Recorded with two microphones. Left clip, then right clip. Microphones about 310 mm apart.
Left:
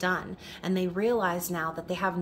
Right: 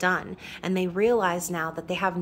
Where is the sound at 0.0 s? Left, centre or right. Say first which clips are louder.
Right 4 dB; centre.